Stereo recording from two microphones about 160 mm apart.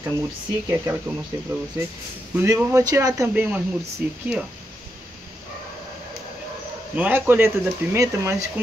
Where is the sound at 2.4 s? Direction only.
15° right (ahead or behind).